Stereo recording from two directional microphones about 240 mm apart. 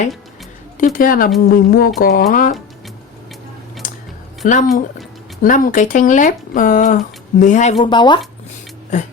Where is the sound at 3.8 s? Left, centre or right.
Left.